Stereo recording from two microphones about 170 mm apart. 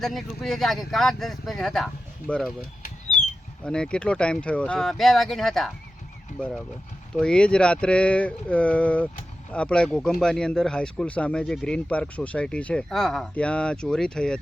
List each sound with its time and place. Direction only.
0.0 s speech: centre (ahead or behind)
2.8 s a sound: 45° left (ahead or behind)
3.6 s speech: 5° left (ahead or behind)
7.2 s speech: 5° left (ahead or behind)